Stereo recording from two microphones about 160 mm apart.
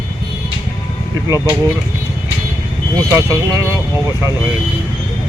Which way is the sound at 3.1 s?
20° right (ahead or behind).